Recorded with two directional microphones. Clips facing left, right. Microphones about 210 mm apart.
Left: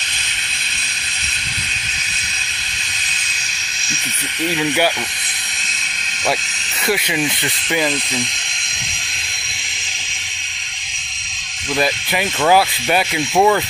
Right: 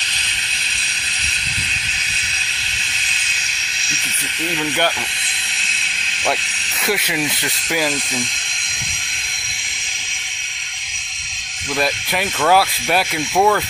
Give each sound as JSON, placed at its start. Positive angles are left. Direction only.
{"t": 4.6, "sound": "speech", "side_deg": 10}
{"t": 6.8, "sound": "speech", "side_deg": 0}
{"t": 11.7, "sound": "speech", "side_deg": 0}